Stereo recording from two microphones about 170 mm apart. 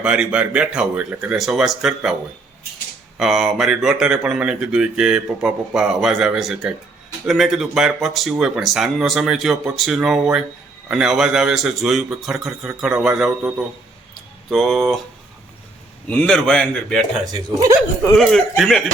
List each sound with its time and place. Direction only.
0.0 s speech: 5° right (ahead or behind)
3.2 s speech: 5° right (ahead or behind)
14.5 s speech: centre (ahead or behind)
16.0 s speech: 5° left (ahead or behind)
17.3 s speech: 25° right (ahead or behind)
18.2 s speech: centre (ahead or behind)